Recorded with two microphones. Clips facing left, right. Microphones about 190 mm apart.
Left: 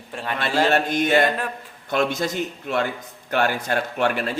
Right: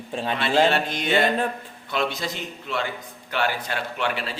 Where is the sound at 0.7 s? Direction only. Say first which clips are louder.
Left 4 dB; 45° left (ahead or behind).